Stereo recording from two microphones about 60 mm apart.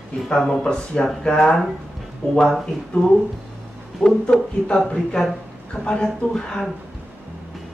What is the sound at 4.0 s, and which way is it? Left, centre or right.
Speech, centre.